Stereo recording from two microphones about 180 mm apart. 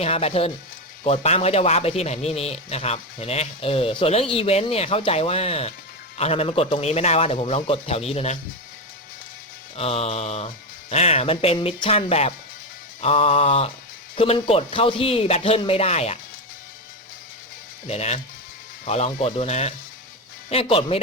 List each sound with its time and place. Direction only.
0.0 s a man's voice: 35° left (ahead or behind)
9.7 s a man's voice: 35° left (ahead or behind)
17.8 s a man's voice: 35° left (ahead or behind)